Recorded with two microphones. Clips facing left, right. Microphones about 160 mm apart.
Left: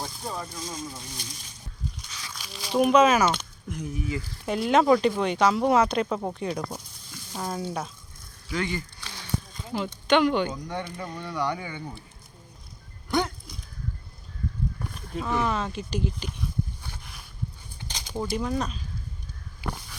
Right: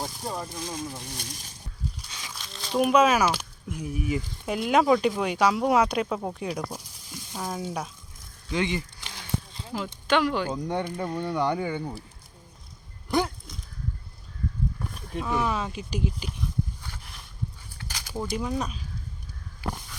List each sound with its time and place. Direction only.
0.0 s speech: 10° right (ahead or behind)
2.0 s a sound: 30° right (ahead or behind)
2.3 s speech: 5° left (ahead or behind)
8.4 s a sound: 20° right (ahead or behind)
9.7 s speech: centre (ahead or behind)
10.5 s speech: 30° right (ahead or behind)
11.0 s speech: 10° right (ahead or behind)
11.3 s speech: 25° right (ahead or behind)
13.1 s a sound: centre (ahead or behind)
14.9 s speech: centre (ahead or behind)
17.7 s a sound: 20° left (ahead or behind)
18.3 s speech: 5° right (ahead or behind)